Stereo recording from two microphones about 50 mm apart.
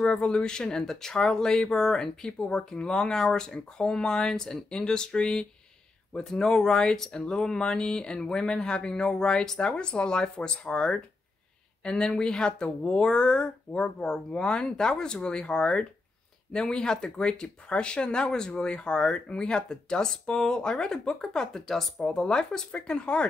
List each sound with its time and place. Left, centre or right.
0.0 s speech: centre